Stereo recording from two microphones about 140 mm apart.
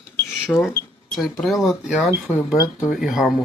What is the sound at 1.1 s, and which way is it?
Speech, centre (ahead or behind).